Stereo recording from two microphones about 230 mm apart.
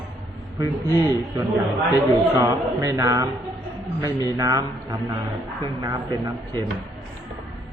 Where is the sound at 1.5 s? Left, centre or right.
Centre.